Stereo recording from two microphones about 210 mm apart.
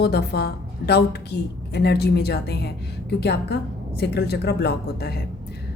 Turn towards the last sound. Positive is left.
turn(degrees=50)  # may be behind; listen again after turning